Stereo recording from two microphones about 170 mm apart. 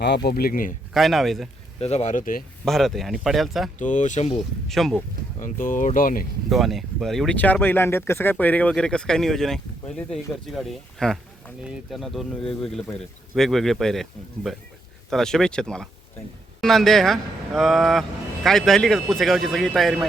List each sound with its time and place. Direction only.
0.3 s speech: 60° left (ahead or behind)
0.9 s speech: centre (ahead or behind)
1.8 s speech: 40° left (ahead or behind)
2.6 s speech: centre (ahead or behind)
3.8 s speech: 45° left (ahead or behind)
4.7 s speech: centre (ahead or behind)
5.4 s speech: 50° left (ahead or behind)
6.5 s speech: centre (ahead or behind)